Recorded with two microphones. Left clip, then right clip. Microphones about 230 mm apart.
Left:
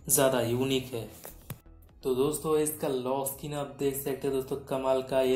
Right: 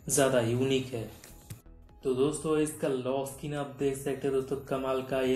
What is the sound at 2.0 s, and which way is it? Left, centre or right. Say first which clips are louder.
Speech: left 1 dB; left.